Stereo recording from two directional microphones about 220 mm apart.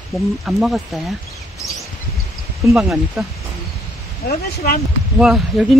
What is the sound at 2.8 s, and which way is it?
Speech, centre (ahead or behind).